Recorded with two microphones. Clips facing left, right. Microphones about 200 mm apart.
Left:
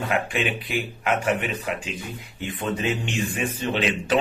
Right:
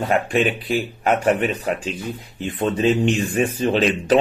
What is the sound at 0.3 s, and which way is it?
A man's voice, 40° right (ahead or behind).